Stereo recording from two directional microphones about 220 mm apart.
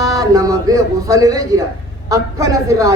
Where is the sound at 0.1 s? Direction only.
15° right (ahead or behind).